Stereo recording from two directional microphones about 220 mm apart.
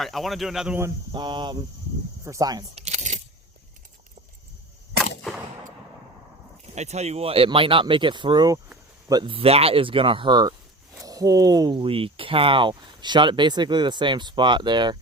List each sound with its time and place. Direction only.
0.0 s speech: centre (ahead or behind); by 2.8 s 15° right (ahead or behind)
2.8 s keys jangling: 30° right (ahead or behind)
6.7 s speech: 30° right (ahead or behind)